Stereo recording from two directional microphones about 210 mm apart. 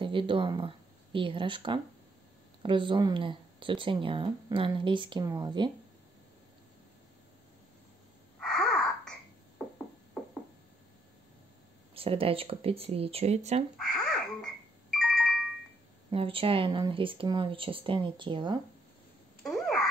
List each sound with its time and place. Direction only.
0.0 s speech: 25° right (ahead or behind)
8.4 s a sound: centre (ahead or behind)
11.9 s speech: 25° right (ahead or behind)
13.7 s quack: 5° left (ahead or behind)
16.1 s speech: 25° right (ahead or behind)
19.4 s babbling: centre (ahead or behind)